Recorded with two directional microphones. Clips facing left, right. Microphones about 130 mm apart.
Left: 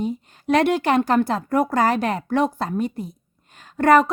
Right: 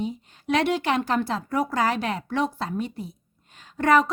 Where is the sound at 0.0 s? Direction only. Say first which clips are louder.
Left 4 dB; 45° left (ahead or behind).